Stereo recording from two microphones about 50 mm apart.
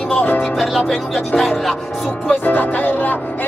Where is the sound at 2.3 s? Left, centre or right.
Left.